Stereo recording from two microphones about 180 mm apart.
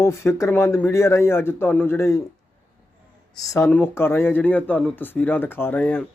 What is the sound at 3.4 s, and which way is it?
Speech, 20° left (ahead or behind).